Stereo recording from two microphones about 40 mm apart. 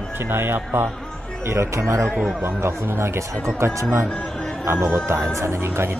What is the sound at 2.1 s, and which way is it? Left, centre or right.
Speech, centre.